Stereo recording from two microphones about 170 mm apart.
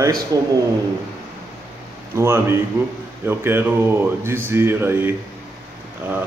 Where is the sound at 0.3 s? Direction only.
20° right (ahead or behind).